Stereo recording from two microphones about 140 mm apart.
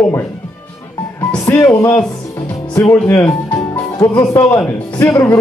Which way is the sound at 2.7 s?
20° left (ahead or behind).